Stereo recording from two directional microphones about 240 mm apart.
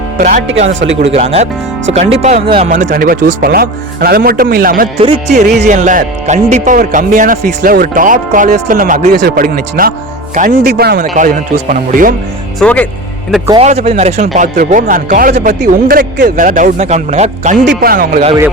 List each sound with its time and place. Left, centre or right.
0.2 s speech: right
1.0 s music: right
2.2 s speech: right
4.9 s music: right
5.5 s speech: right
12.5 s speech: centre
13.5 s speech: right